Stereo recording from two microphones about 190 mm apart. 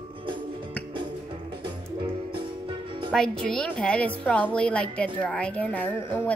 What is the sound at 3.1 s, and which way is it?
A woman's voice, 5° left (ahead or behind).